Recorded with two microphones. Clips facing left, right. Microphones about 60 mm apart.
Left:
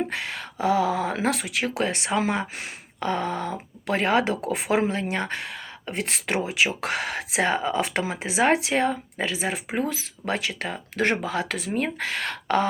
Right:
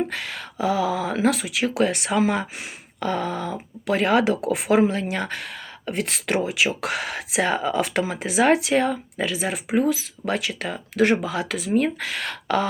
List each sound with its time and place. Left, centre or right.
0.1 s speech: left
1.8 s speech: left
6.8 s speech: left